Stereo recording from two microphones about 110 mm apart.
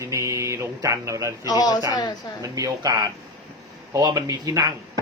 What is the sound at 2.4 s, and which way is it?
Speech, 30° right (ahead or behind).